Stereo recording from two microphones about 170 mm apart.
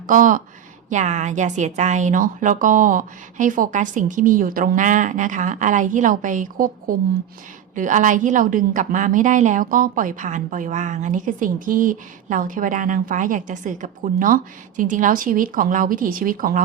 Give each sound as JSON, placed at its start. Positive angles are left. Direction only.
{"t": 0.1, "sound": "a woman's voice", "side_deg": -50}